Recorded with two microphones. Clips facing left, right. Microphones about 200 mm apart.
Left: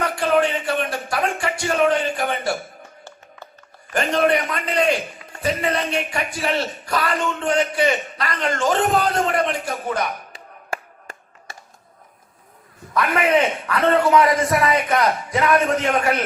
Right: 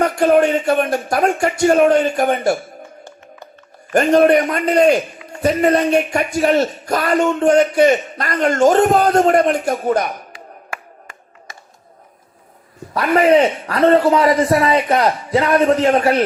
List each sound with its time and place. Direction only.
0.0 s speech: 45° right (ahead or behind)
3.9 s speech: 45° right (ahead or behind)
10.7 s a sound: 35° left (ahead or behind)
12.9 s a man's voice: 35° right (ahead or behind)